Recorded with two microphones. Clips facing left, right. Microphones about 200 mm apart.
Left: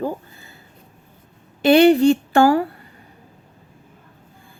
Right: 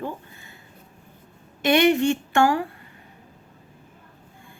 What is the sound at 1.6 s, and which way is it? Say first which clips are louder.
Speech: left 6 dB; 35° left (ahead or behind).